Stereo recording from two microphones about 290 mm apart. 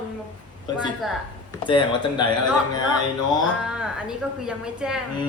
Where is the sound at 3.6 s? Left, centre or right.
Centre.